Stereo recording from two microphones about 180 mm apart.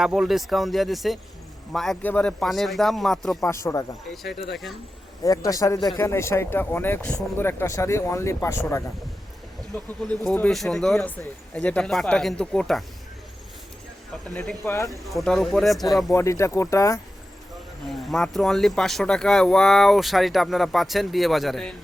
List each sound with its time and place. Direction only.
0.0 s speech: centre (ahead or behind)
3.4 s speech: 15° left (ahead or behind)
4.1 s speech: centre (ahead or behind)
5.2 s a man's voice: 20° left (ahead or behind)
9.7 s speech: 10° left (ahead or behind)
14.3 s speech: 10° left (ahead or behind)
14.8 s speech: centre (ahead or behind)
16.1 s speech: 15° left (ahead or behind)
17.8 s speech: centre (ahead or behind)